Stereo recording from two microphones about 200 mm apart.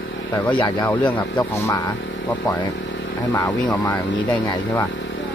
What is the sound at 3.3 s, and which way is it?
Speech, 15° left (ahead or behind).